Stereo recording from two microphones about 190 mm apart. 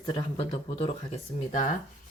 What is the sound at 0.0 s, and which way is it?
Speech, 25° left (ahead or behind).